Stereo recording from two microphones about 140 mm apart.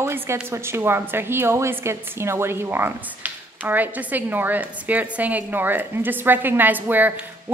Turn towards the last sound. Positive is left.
turn(degrees=-10)  # may be behind; listen again after turning